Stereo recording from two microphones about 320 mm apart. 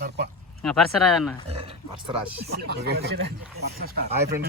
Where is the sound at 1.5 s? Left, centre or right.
Centre.